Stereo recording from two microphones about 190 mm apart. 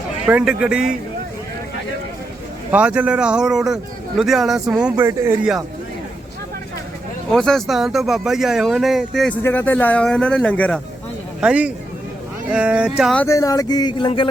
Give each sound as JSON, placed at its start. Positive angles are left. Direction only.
{"t": 0.3, "sound": "speech", "side_deg": -5}
{"t": 2.7, "sound": "speech", "side_deg": -5}
{"t": 7.3, "sound": "speech", "side_deg": 0}
{"t": 11.3, "sound": "speech", "side_deg": -5}
{"t": 13.1, "sound": "speech", "side_deg": 15}